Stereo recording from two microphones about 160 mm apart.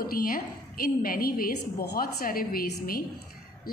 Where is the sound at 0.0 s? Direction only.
65° left (ahead or behind).